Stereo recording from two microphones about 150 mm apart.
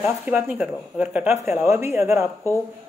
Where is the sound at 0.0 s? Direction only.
10° right (ahead or behind).